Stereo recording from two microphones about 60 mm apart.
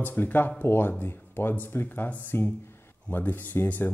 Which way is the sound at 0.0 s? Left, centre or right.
Left.